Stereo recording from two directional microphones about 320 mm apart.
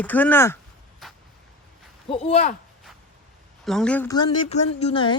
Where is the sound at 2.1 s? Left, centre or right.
Centre.